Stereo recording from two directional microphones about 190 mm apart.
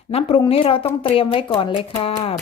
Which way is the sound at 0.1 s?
30° left (ahead or behind).